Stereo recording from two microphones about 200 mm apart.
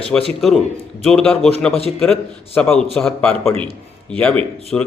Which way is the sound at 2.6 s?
5° left (ahead or behind).